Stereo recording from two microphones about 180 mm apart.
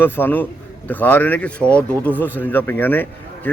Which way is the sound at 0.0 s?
10° left (ahead or behind).